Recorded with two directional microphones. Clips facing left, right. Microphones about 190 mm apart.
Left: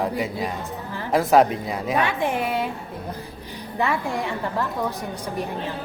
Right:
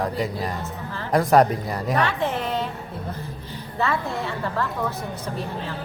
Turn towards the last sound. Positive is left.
turn(degrees=15)  # may be behind; listen again after turning